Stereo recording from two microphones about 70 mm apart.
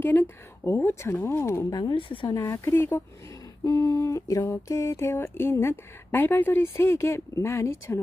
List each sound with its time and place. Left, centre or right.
0.0 s speech: left
1.7 s speech: left
2.5 s speech: left
3.6 s a sound: left
4.5 s speech: left